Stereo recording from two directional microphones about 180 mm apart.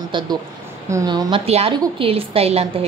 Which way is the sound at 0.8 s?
20° right (ahead or behind).